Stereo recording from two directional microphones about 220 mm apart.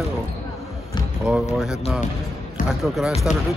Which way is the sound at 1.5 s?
Centre (ahead or behind).